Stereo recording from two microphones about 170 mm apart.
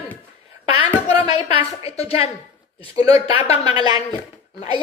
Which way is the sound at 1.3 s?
35° left (ahead or behind).